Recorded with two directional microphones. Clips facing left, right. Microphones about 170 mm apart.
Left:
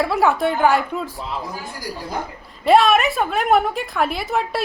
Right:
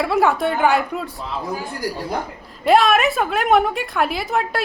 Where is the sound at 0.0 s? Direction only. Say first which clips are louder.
Even; centre (ahead or behind).